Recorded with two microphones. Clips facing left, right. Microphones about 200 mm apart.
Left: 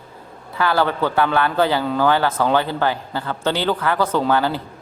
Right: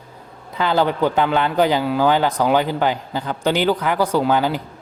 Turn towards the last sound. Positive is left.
turn(degrees=-15)  # may be behind; listen again after turning